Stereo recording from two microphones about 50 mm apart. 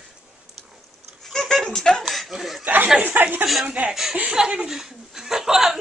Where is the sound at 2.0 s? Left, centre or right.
Centre.